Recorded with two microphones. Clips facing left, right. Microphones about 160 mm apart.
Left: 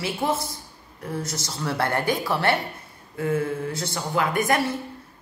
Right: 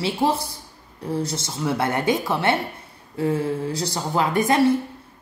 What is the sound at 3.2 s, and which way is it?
A woman's voice, 35° right (ahead or behind).